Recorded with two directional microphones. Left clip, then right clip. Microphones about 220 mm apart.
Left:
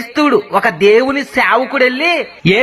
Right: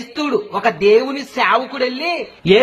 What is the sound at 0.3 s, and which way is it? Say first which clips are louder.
Speech: left 4 dB; 20° left (ahead or behind).